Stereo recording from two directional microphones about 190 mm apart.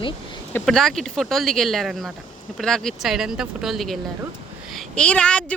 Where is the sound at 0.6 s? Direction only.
Centre (ahead or behind).